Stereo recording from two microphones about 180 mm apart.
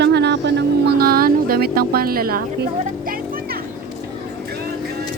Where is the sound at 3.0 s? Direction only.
55° right (ahead or behind).